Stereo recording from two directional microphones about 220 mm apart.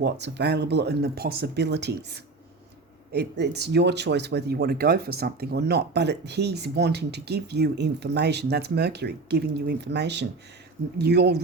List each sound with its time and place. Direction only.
0.0 s speech: 50° right (ahead or behind)